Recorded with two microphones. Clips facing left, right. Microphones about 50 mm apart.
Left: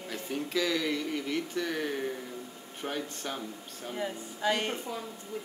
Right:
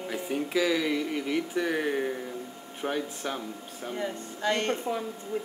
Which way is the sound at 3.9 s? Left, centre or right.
Centre.